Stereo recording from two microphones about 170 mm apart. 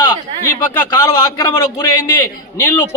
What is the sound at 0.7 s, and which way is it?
A man's voice, 15° left (ahead or behind).